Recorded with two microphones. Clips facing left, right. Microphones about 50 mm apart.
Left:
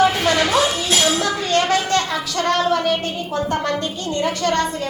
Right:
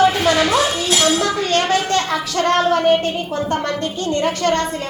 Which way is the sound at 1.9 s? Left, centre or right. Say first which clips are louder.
Right 1 dB; right.